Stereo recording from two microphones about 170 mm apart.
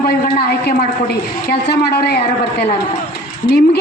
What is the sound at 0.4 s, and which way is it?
A man's voice, 65° left (ahead or behind).